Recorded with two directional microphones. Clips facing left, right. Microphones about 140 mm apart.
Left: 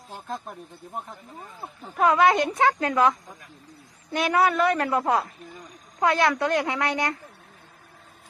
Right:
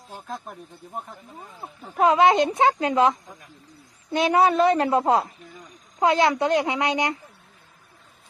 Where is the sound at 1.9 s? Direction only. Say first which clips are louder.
Right 2 dB; 20° right (ahead or behind).